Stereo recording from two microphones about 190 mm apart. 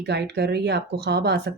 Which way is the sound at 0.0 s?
60° right (ahead or behind).